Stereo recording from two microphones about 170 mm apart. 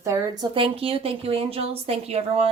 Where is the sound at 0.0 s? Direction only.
20° right (ahead or behind).